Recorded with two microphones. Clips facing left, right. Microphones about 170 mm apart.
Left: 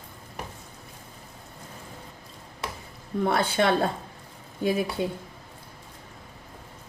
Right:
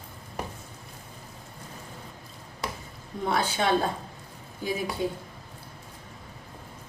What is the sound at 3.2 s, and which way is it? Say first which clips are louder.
A woman's voice: left 3 dB; 60° left (ahead or behind).